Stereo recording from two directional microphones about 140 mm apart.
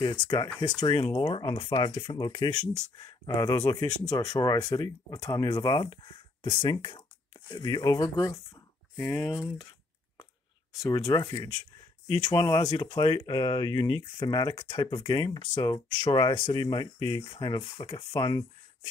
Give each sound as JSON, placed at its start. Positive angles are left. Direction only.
{"t": 0.6, "sound": "speech", "side_deg": 30}
{"t": 10.8, "sound": "speech", "side_deg": 25}